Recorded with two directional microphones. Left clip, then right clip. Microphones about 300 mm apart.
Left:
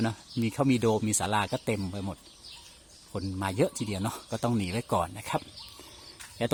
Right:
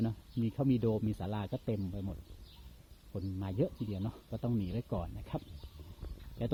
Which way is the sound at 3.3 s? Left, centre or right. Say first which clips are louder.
Left 8 dB; centre.